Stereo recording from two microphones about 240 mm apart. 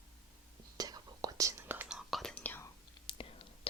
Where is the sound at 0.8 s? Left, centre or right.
Centre.